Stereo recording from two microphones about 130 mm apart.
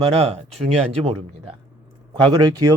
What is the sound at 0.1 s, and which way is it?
Speech, 50° right (ahead or behind).